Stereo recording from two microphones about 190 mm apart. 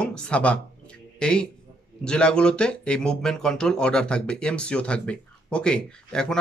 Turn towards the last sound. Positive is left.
turn(degrees=5)  # may be behind; listen again after turning